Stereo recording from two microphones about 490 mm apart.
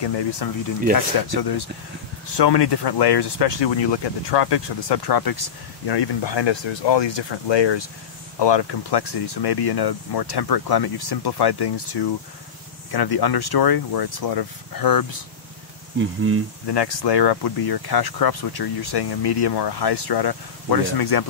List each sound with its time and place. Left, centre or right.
0.4 s speech: left
16.0 s cricket: right
16.6 s speech: left